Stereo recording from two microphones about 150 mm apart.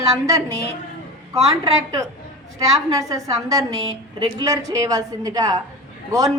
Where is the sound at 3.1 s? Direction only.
25° right (ahead or behind).